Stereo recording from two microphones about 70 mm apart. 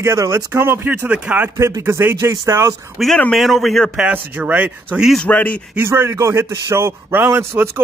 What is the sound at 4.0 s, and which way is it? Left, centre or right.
Speech, centre.